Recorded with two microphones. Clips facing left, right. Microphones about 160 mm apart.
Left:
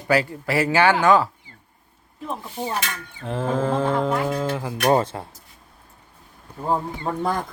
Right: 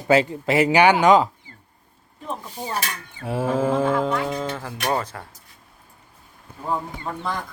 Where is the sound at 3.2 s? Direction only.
10° right (ahead or behind).